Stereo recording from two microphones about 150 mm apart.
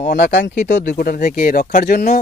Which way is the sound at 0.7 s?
70° left (ahead or behind).